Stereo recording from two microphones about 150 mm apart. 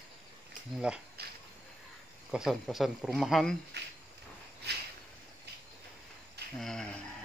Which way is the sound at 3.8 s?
90° right.